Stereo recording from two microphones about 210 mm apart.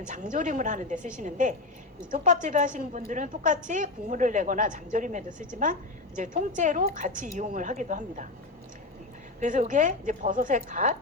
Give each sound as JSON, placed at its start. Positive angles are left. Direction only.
{"t": 0.1, "sound": "a woman's voice", "side_deg": -35}
{"t": 9.4, "sound": "a woman's voice", "side_deg": -35}